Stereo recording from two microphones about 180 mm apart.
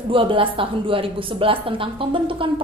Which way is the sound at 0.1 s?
30° right (ahead or behind).